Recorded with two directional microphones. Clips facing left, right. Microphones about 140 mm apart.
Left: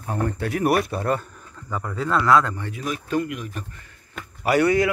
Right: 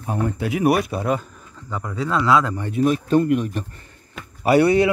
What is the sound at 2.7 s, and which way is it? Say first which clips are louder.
A man's voice: right 9 dB; 30° right (ahead or behind).